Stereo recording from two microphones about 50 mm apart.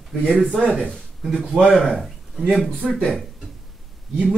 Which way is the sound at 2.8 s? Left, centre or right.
Centre.